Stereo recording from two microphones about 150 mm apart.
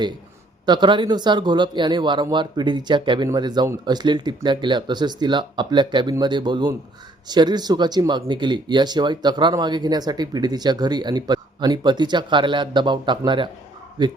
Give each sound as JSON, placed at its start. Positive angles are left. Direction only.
{"t": 0.6, "sound": "a man's voice", "side_deg": -30}